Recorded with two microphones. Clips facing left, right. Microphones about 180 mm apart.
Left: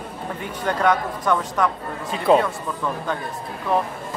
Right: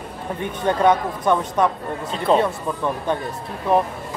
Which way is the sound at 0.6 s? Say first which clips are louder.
Right 3 dB; 25° right (ahead or behind).